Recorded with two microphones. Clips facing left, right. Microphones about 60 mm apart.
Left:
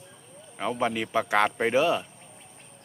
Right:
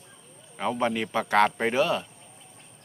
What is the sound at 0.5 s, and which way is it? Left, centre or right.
Speech, centre.